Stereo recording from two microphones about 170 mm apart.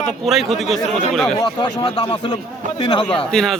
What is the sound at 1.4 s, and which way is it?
Speech, 25° left (ahead or behind).